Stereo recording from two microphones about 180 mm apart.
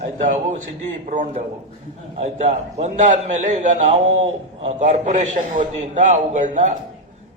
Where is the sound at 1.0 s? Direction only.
45° right (ahead or behind).